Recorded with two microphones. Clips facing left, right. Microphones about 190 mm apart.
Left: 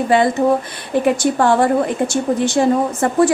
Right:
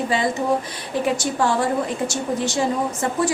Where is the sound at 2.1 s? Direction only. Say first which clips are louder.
Left 6 dB; 55° left (ahead or behind).